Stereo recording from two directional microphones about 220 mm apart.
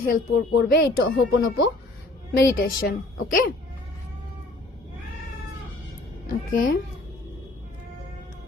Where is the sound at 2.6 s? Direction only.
40° left (ahead or behind).